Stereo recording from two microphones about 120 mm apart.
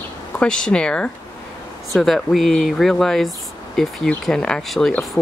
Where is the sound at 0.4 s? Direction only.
5° left (ahead or behind).